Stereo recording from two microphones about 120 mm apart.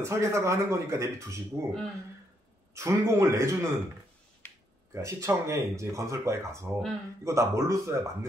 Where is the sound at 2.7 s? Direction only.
25° right (ahead or behind).